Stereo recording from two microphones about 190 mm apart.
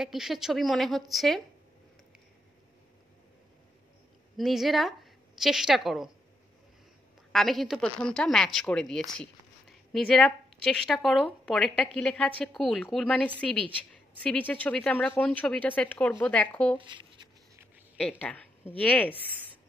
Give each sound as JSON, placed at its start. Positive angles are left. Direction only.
{"t": 0.0, "sound": "speech", "side_deg": 0}
{"t": 4.4, "sound": "speech", "side_deg": 0}
{"t": 7.3, "sound": "a woman's voice", "side_deg": 0}
{"t": 16.8, "sound": "a sound", "side_deg": -25}
{"t": 18.2, "sound": "a woman's voice", "side_deg": 10}